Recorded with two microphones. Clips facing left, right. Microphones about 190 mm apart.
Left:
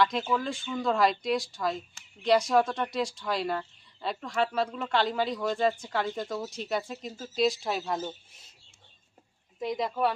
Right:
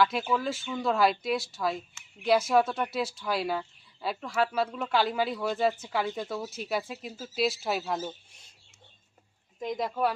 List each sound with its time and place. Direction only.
0.0 s speech: 5° right (ahead or behind)
9.6 s speech: centre (ahead or behind)